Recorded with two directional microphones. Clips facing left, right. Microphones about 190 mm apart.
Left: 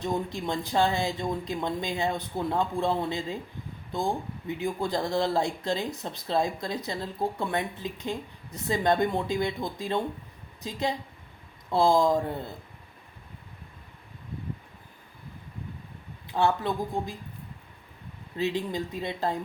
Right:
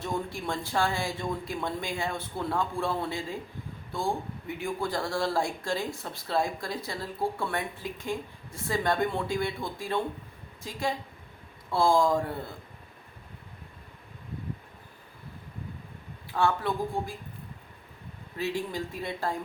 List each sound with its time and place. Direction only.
0.0 s speech: 20° left (ahead or behind)
16.3 s speech: 20° left (ahead or behind)
18.3 s speech: 20° left (ahead or behind)